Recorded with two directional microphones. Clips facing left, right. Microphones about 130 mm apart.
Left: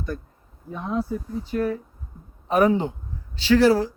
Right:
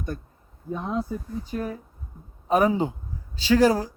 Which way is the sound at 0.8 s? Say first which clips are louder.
Left 3 dB; 20° right (ahead or behind).